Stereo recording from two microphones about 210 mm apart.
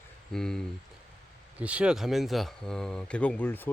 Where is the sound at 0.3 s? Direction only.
Centre (ahead or behind).